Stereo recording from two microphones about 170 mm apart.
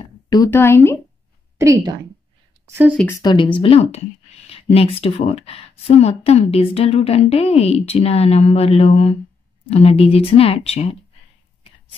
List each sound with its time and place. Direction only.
0.3 s speech: 15° left (ahead or behind)
1.6 s a woman's voice: 20° right (ahead or behind)
3.1 s speech: 25° left (ahead or behind)
3.5 s speech: 35° left (ahead or behind)